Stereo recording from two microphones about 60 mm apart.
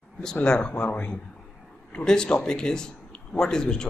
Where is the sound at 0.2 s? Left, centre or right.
Centre.